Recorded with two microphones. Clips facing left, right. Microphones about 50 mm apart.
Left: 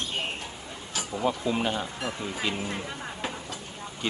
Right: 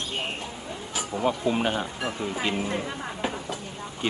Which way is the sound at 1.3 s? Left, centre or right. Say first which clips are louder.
Right 2 dB; right.